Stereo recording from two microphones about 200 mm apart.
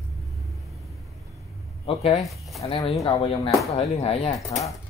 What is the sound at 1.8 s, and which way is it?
Speech, 30° left (ahead or behind).